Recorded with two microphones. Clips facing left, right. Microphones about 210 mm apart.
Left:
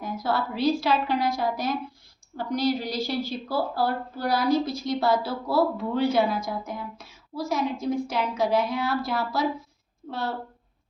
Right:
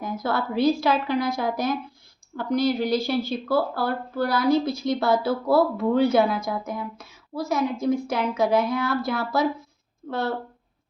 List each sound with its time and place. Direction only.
0.0 s a woman's voice: 50° right (ahead or behind)